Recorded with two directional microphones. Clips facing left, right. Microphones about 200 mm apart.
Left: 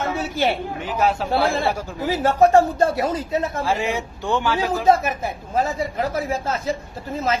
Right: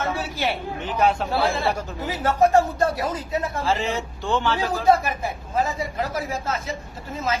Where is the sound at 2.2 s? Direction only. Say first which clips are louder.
Left 3 dB; 30° left (ahead or behind).